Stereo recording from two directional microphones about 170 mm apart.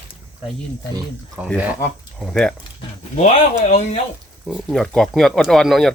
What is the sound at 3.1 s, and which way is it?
Speech, 40° left (ahead or behind).